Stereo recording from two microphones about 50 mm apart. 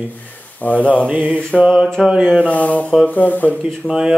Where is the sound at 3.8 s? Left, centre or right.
Centre.